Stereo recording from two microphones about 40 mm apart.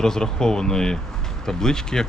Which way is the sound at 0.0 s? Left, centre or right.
Centre.